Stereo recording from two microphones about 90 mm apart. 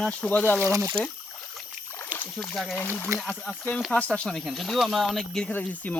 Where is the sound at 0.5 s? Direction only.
30° right (ahead or behind).